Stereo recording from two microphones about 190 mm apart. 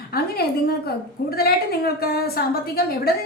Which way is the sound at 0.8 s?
55° left (ahead or behind).